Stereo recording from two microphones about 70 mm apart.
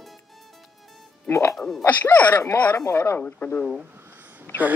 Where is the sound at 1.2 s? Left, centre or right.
Left.